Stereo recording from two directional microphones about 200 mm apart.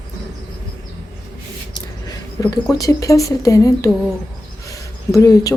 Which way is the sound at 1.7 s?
20° left (ahead or behind).